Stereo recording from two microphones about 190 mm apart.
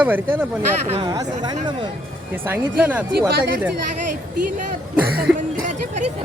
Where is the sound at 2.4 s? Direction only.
10° right (ahead or behind).